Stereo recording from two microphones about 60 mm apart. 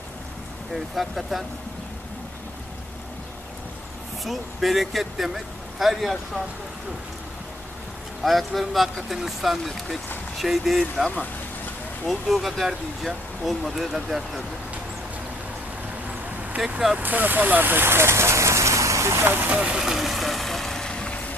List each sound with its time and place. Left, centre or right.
0.7 s speech: centre
4.2 s speech: centre
8.2 s speech: centre
12.0 s speech: centre
16.6 s speech: centre
17.0 s speech: right
19.5 s vehicle: centre